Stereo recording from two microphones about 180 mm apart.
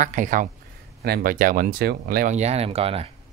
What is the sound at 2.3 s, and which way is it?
Speech, 35° right (ahead or behind).